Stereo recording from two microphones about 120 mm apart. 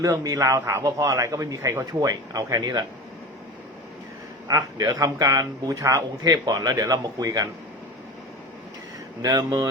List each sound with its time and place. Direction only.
0.0 s a man's voice: 25° right (ahead or behind)
4.4 s speech: 30° right (ahead or behind)
9.2 s speech: 35° right (ahead or behind)